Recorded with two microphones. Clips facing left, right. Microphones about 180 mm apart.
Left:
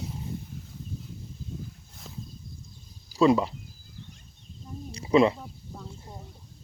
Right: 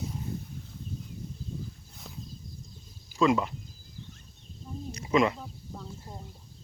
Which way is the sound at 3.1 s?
35° left (ahead or behind).